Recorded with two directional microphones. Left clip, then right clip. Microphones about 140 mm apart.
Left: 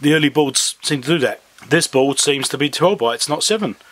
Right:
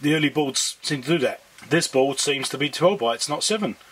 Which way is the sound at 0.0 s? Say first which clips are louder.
Left 7 dB; 35° left (ahead or behind).